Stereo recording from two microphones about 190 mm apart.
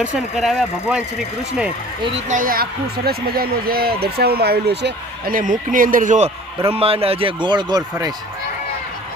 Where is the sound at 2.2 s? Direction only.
45° right (ahead or behind); by 8.1 s 20° right (ahead or behind).